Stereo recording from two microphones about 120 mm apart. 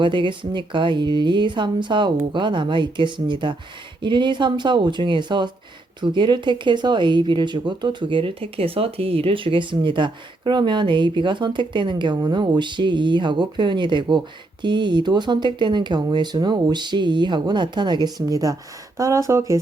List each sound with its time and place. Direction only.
0.0 s speech: 40° right (ahead or behind); by 19.5 s 25° right (ahead or behind)